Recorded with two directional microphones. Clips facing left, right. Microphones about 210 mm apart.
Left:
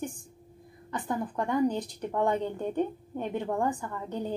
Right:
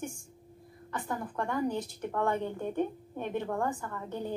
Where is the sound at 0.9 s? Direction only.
15° left (ahead or behind).